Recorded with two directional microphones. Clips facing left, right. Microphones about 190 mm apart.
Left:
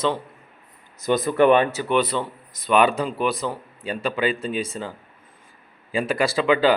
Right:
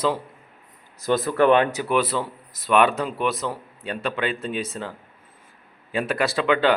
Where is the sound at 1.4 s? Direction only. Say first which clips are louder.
Left 1 dB; 5° left (ahead or behind).